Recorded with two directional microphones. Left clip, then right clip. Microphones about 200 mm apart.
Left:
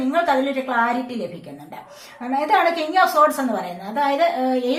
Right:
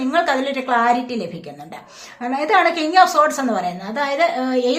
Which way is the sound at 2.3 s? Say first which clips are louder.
Right 2 dB; 35° right (ahead or behind).